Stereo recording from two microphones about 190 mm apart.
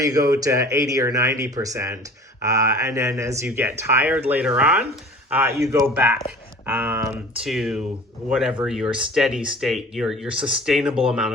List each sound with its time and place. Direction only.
0.0 s speech: 20° right (ahead or behind)
6.0 s speech: 5° right (ahead or behind)
10.3 s speech: 25° right (ahead or behind)
10.7 s speech: centre (ahead or behind)